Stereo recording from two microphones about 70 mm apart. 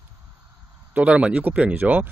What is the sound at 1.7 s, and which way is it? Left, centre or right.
Speech, right.